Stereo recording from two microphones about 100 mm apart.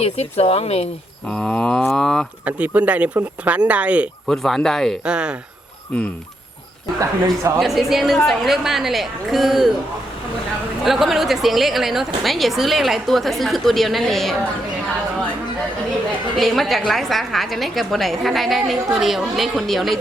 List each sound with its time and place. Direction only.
0.0 s speech: 90° left
1.3 s cattle: 10° left (ahead or behind)
2.4 s speech: 15° right (ahead or behind)
4.3 s a woman's voice: 5° left (ahead or behind)
5.0 s speech: 10° right (ahead or behind)
7.0 s speech: 30° right (ahead or behind)
7.6 s a woman's voice: centre (ahead or behind)
10.8 s a woman's voice: centre (ahead or behind)
16.4 s a woman's voice: centre (ahead or behind)